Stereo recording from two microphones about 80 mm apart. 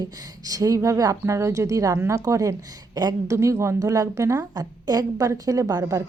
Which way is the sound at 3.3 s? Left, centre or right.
Right.